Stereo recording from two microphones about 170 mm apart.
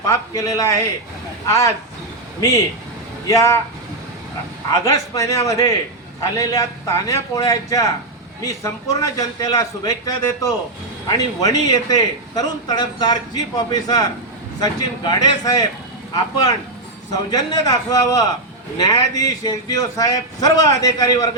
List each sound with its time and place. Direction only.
0.1 s a man's voice: 20° left (ahead or behind)
3.2 s speech: 20° left (ahead or behind)
4.7 s a man's voice: 20° left (ahead or behind)